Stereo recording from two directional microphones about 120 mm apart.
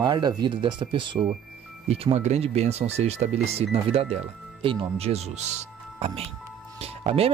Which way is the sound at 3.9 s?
50° right (ahead or behind).